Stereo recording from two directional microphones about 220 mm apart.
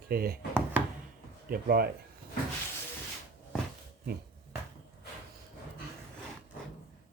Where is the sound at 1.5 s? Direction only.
45° right (ahead or behind).